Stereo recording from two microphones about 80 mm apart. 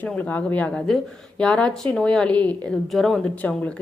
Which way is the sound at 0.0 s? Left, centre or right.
Centre.